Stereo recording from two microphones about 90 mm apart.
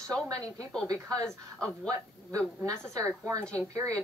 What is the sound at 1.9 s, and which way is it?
Speech, 40° right (ahead or behind).